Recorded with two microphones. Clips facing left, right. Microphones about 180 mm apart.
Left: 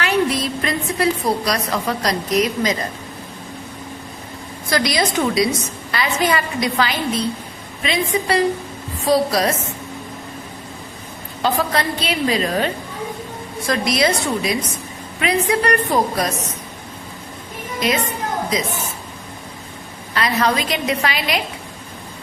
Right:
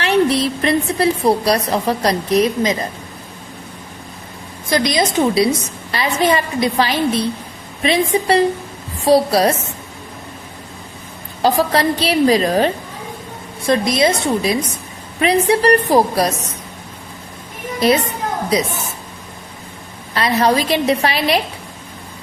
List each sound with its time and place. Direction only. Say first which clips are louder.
0.0 s a woman's voice: right 4 dB; 30° right (ahead or behind)
4.7 s a woman's voice: right 3 dB; 20° right (ahead or behind)
11.4 s a woman's voice: right 5 dB; 35° right (ahead or behind)
17.7 s a woman's voice: right 6 dB; 35° right (ahead or behind)
20.1 s a woman's voice: right 4 dB; 35° right (ahead or behind)